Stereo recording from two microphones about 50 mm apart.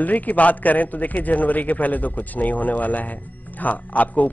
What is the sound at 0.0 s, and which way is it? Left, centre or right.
A man's voice, left.